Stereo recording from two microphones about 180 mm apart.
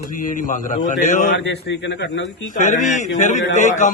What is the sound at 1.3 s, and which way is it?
Speech, 85° left.